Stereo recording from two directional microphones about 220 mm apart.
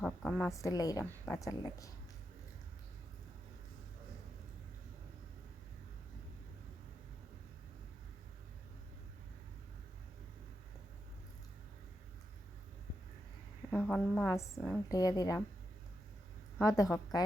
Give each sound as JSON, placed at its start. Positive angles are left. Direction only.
{"t": 0.0, "sound": "a woman's voice", "side_deg": 5}
{"t": 13.7, "sound": "speech", "side_deg": 5}
{"t": 14.3, "sound": "a woman's voice", "side_deg": 15}
{"t": 16.6, "sound": "a woman's voice", "side_deg": 15}